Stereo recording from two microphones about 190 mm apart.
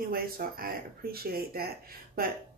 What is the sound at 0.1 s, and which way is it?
Speech, 50° right (ahead or behind).